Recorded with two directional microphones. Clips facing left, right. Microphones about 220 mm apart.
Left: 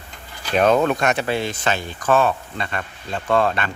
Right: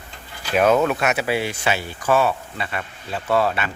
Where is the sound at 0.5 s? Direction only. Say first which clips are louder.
Even; 5° right (ahead or behind).